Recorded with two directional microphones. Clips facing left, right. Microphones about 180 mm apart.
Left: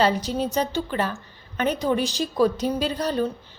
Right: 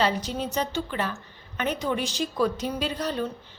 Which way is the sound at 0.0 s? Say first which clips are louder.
Left 4 dB; 40° left (ahead or behind).